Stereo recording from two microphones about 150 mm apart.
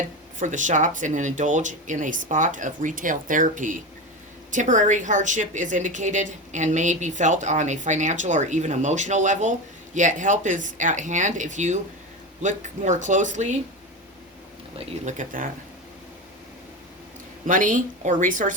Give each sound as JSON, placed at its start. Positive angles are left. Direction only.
{"t": 0.3, "sound": "a woman's voice", "side_deg": -55}
{"t": 15.0, "sound": "a woman's voice", "side_deg": -60}
{"t": 17.4, "sound": "a woman's voice", "side_deg": -60}